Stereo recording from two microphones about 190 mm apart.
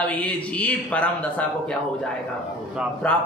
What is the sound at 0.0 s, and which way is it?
Speech, 5° left (ahead or behind).